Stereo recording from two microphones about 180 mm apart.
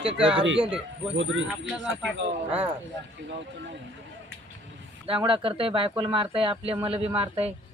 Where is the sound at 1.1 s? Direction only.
90° right.